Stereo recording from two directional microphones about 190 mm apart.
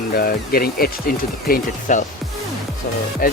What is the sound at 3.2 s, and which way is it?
Speech, 50° left (ahead or behind).